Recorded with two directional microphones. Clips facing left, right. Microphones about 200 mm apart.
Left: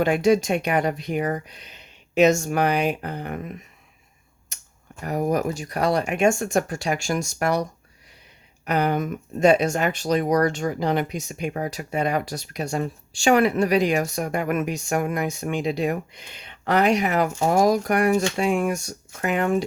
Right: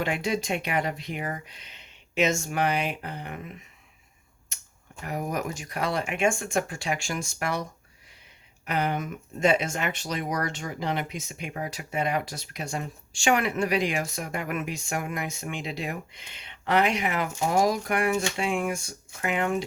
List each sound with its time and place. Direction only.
0.0 s speech: 45° left (ahead or behind)
5.0 s speech: 35° left (ahead or behind)
8.6 s speech: 40° left (ahead or behind)